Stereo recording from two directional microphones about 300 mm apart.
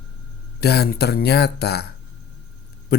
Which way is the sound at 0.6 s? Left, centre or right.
Left.